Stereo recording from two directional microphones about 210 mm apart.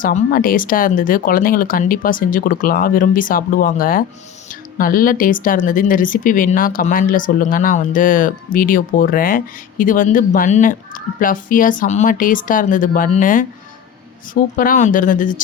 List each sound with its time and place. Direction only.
0.0 s speech: 40° left (ahead or behind)
14.5 s speech: 40° left (ahead or behind)